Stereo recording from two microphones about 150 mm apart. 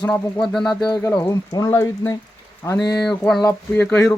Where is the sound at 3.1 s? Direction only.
5° left (ahead or behind).